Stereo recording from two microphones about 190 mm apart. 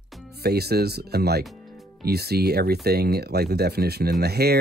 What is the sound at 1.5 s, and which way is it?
Music, centre (ahead or behind).